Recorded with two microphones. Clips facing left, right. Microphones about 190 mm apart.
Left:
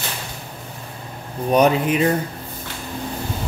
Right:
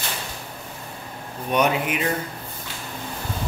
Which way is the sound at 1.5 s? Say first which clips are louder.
Left 5 dB; 35° left (ahead or behind).